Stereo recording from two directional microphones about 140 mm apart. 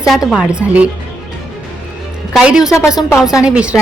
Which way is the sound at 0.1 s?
Centre (ahead or behind).